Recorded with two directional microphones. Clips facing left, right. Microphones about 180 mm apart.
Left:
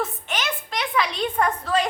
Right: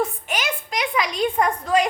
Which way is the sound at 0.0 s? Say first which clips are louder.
Right 3 dB; 15° right (ahead or behind).